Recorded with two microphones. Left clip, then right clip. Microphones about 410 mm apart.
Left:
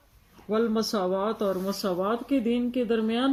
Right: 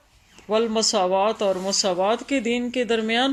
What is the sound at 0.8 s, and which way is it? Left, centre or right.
Speech, right.